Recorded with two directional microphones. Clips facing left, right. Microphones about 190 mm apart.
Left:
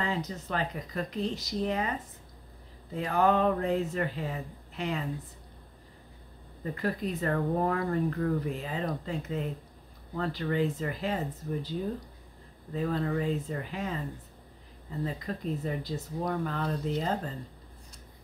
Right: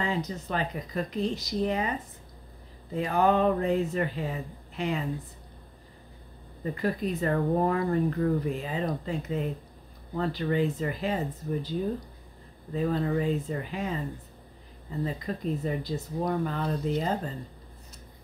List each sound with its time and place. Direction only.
0.0 s speech: 15° right (ahead or behind)
6.6 s speech: 15° right (ahead or behind)
12.7 s speech: 20° right (ahead or behind)
15.0 s speech: 15° right (ahead or behind)